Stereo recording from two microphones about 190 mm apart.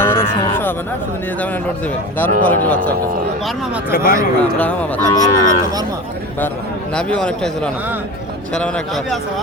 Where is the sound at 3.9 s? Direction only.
50° left (ahead or behind).